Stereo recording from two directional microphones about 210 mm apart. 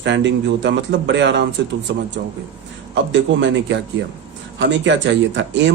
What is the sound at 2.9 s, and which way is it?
Speech, 60° right (ahead or behind).